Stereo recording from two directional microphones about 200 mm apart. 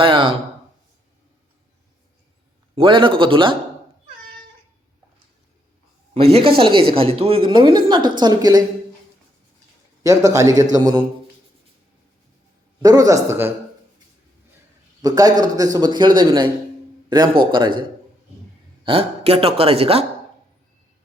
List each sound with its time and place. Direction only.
0.0 s speech: 25° right (ahead or behind)
2.7 s a man's voice: 25° right (ahead or behind)
6.1 s a man's voice: 30° right (ahead or behind)
10.0 s a man's voice: 15° right (ahead or behind)
12.8 s a man's voice: 20° right (ahead or behind)
15.0 s a man's voice: 20° right (ahead or behind)
18.9 s a man's voice: 30° right (ahead or behind)